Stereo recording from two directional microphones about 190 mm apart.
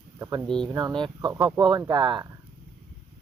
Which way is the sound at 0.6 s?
20° right (ahead or behind).